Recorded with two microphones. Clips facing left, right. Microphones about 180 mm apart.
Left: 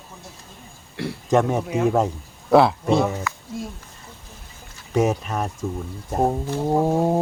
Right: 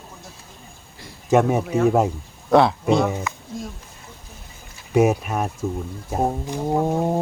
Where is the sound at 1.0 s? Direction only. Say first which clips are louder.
Left 16 dB; 70° left (ahead or behind).